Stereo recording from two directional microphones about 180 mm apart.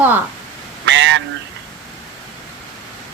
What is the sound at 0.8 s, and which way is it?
Speech, 85° right.